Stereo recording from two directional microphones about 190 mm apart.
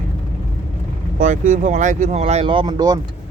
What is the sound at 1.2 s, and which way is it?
Speech, 40° right (ahead or behind).